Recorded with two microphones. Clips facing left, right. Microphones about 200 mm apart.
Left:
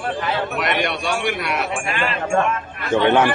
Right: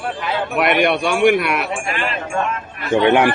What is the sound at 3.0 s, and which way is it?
Speech, 15° right (ahead or behind).